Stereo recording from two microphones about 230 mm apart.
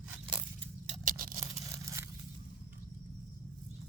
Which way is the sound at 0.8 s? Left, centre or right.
Right.